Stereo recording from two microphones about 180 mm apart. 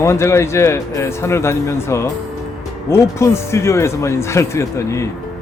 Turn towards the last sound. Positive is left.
turn(degrees=15)  # may be behind; listen again after turning